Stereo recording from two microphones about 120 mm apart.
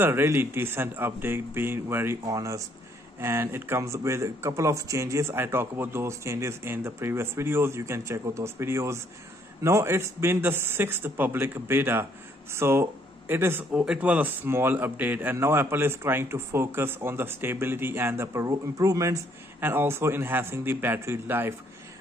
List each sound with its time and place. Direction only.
0.0 s a man's voice: 20° right (ahead or behind)
2.2 s a man's voice: 30° right (ahead or behind)